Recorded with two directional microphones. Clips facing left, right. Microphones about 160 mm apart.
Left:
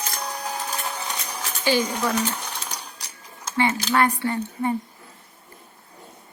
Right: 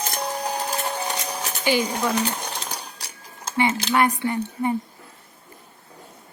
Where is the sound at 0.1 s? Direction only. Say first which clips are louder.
Right 4 dB; 25° right (ahead or behind).